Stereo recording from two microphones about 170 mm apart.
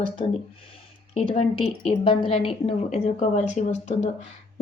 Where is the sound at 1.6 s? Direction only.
35° left (ahead or behind).